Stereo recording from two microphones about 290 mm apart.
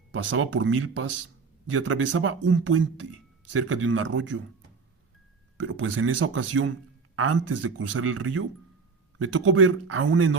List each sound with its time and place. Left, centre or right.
0.2 s speech: right
5.5 s speech: right